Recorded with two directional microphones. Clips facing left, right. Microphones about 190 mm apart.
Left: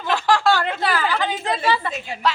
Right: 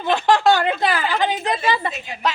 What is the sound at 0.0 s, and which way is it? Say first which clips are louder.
A woman's voice: right 3 dB; 20° right (ahead or behind).